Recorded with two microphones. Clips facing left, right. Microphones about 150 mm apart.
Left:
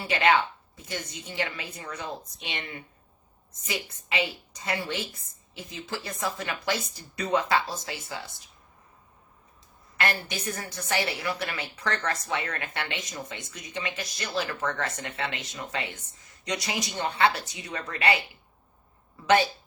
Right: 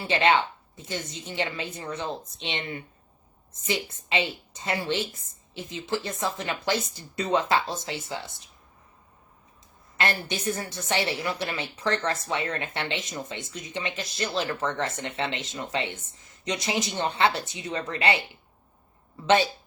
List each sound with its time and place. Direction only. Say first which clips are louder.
0.0 s a woman's voice: right 1 dB; 25° right (ahead or behind)
10.2 s a woman's voice: right 4 dB; 25° right (ahead or behind)